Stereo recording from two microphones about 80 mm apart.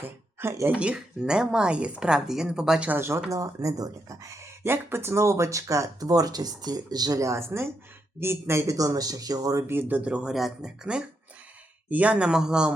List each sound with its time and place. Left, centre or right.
0.7 s speech: centre
2.9 s speech: right
3.2 s speech: right
4.6 s speech: right
9.6 s speech: right
10.0 s speech: centre